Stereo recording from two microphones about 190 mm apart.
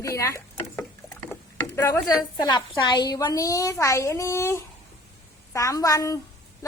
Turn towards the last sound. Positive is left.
turn(degrees=15)  # may be behind; listen again after turning